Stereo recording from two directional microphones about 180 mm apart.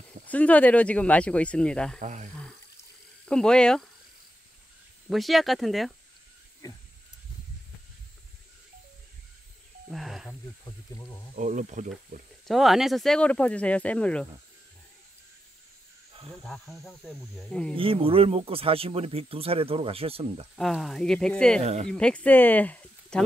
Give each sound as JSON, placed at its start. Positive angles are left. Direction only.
{"t": 0.3, "sound": "speech", "side_deg": 10}
{"t": 2.0, "sound": "speech", "side_deg": -45}
{"t": 3.3, "sound": "speech", "side_deg": 5}
{"t": 5.1, "sound": "speech", "side_deg": 0}
{"t": 6.6, "sound": "a sound", "side_deg": 20}
{"t": 9.8, "sound": "a sound", "side_deg": 0}
{"t": 10.6, "sound": "snake", "side_deg": 20}
{"t": 11.3, "sound": "speech", "side_deg": -45}
{"t": 12.4, "sound": "speech", "side_deg": 0}
{"t": 16.4, "sound": "speech", "side_deg": 0}
{"t": 17.7, "sound": "speech", "side_deg": -30}
{"t": 20.5, "sound": "speech", "side_deg": 0}
{"t": 21.5, "sound": "speech", "side_deg": -40}
{"t": 21.8, "sound": "speech", "side_deg": 5}